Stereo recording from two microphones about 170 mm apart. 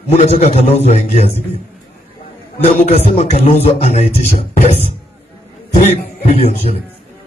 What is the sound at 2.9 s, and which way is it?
A man's voice, 40° left (ahead or behind).